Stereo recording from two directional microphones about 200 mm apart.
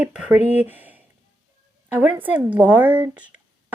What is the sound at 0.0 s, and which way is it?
A woman's voice, 5° right (ahead or behind).